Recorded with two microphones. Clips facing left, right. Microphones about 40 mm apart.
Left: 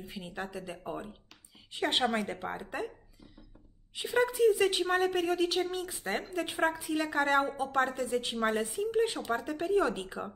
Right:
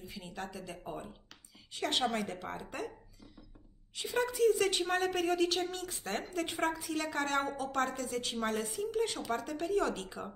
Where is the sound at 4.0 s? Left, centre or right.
Centre.